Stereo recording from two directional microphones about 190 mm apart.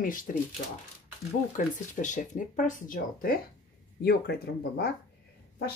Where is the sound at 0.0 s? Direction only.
45° left (ahead or behind).